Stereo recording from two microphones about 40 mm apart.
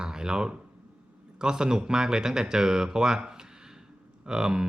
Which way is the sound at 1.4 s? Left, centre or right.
Centre.